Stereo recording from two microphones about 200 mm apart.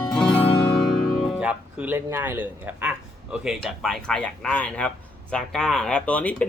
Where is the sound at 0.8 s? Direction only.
Centre (ahead or behind).